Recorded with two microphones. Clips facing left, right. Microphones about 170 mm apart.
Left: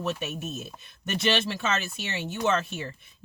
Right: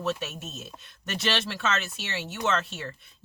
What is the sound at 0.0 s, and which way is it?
Speech, 15° left (ahead or behind).